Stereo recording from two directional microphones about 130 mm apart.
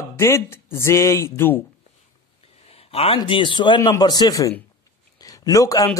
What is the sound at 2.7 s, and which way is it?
A man's voice, 50° left (ahead or behind).